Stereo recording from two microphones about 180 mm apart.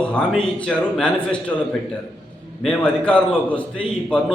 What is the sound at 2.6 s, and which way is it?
A man's voice, 5° left (ahead or behind).